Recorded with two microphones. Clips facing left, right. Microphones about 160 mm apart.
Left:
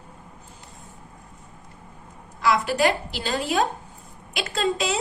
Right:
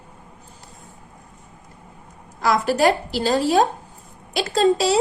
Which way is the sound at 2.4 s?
40° right (ahead or behind).